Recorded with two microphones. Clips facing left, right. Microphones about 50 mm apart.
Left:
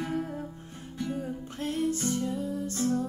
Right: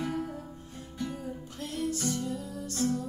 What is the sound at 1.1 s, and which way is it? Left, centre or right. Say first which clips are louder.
Music: left 4 dB; left.